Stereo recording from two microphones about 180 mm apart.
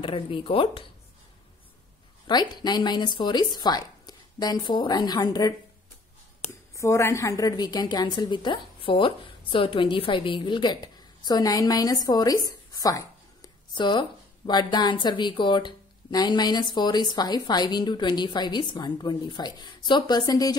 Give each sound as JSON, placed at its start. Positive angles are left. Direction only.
{"t": 0.0, "sound": "a woman's voice", "side_deg": 30}
{"t": 2.2, "sound": "a woman's voice", "side_deg": 25}
{"t": 6.7, "sound": "a woman's voice", "side_deg": 15}